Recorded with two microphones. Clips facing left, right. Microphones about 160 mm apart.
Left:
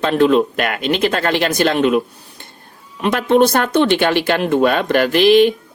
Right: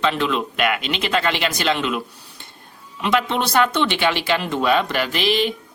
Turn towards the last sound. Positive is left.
turn(degrees=55)  # may be behind; listen again after turning